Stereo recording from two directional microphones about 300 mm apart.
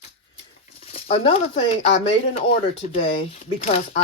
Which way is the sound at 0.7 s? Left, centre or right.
Centre.